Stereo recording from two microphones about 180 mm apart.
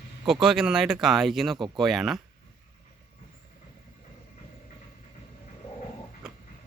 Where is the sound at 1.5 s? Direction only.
25° right (ahead or behind).